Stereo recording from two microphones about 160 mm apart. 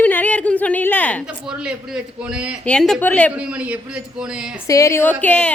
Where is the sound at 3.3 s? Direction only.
10° right (ahead or behind).